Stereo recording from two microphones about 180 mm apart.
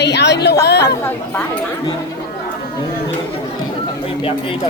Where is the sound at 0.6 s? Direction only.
70° left (ahead or behind).